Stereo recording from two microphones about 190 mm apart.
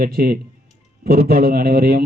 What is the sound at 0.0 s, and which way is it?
Speech, 50° right (ahead or behind).